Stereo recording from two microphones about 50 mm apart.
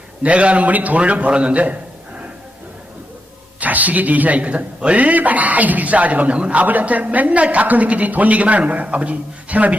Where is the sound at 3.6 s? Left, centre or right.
Right.